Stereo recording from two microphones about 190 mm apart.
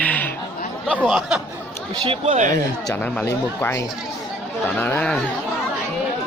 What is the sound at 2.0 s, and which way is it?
Speech, 30° right (ahead or behind).